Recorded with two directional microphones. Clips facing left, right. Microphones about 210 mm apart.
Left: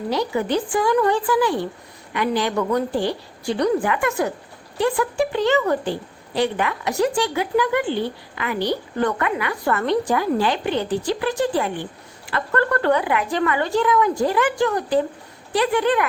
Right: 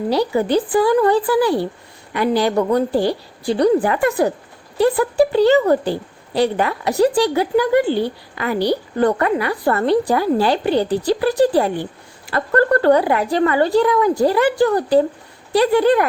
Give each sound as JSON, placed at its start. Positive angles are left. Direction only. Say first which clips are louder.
{"t": 0.1, "sound": "a woman's voice", "louder": "right 4 dB", "side_deg": -35}